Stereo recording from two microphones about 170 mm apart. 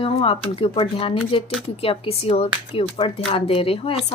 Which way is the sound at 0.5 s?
30° left (ahead or behind).